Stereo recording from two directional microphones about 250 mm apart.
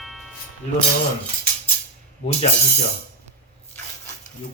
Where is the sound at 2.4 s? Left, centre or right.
Left.